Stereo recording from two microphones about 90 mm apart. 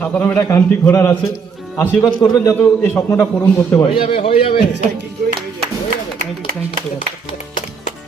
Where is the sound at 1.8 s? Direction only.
40° left (ahead or behind).